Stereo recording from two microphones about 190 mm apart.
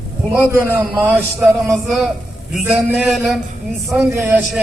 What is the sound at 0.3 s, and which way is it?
A man's voice, 10° right (ahead or behind).